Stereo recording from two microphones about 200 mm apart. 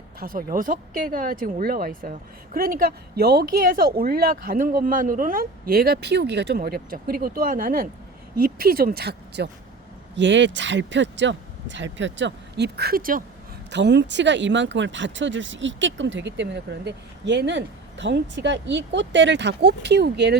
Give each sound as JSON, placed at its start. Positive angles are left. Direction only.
{"t": 0.2, "sound": "speech", "side_deg": -45}
{"t": 13.7, "sound": "speech", "side_deg": -60}